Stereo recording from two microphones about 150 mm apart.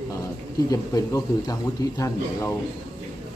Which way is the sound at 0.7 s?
25° left (ahead or behind).